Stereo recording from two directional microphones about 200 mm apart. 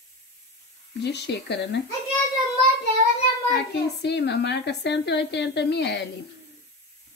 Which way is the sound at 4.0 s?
60° left (ahead or behind).